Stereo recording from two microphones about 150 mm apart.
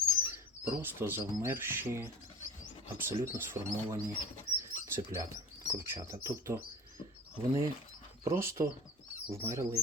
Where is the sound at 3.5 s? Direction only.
15° right (ahead or behind).